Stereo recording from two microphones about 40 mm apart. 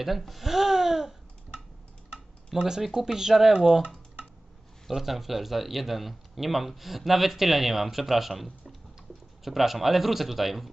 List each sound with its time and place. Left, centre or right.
0.2 s speech: centre
2.6 s speech: centre
4.9 s speech: centre